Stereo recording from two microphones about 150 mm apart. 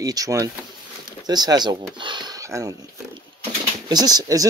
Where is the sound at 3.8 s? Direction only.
25° right (ahead or behind).